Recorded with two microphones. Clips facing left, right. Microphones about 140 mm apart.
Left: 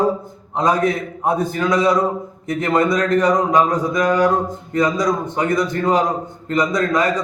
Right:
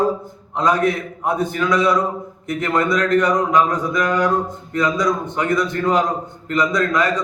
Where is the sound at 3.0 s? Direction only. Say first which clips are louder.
Left 1 dB; 30° left (ahead or behind).